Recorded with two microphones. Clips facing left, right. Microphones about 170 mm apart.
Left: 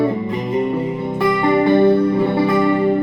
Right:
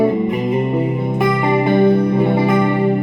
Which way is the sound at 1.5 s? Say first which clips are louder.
Left 1 dB; 15° right (ahead or behind).